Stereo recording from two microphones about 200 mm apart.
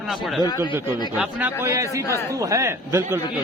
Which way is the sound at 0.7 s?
10° right (ahead or behind).